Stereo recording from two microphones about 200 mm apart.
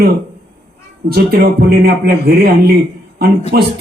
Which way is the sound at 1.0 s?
50° right (ahead or behind).